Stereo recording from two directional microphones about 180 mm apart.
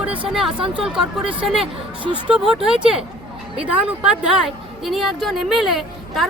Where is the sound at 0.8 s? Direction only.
5° right (ahead or behind).